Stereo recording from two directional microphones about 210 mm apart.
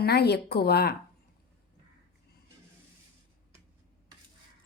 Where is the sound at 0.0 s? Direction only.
50° left (ahead or behind).